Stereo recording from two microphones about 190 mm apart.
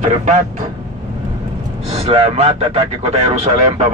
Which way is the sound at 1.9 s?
30° right (ahead or behind).